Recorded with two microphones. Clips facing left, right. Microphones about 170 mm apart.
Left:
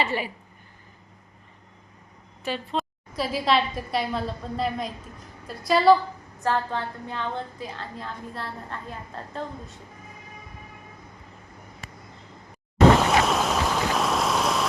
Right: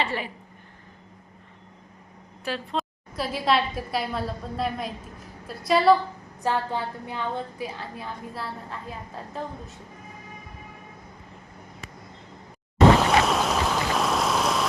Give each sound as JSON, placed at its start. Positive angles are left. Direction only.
{"t": 0.0, "sound": "a woman's voice", "side_deg": 5}
{"t": 2.4, "sound": "a woman's voice", "side_deg": 0}
{"t": 6.4, "sound": "a woman's voice", "side_deg": -15}
{"t": 13.0, "sound": "boat", "side_deg": 0}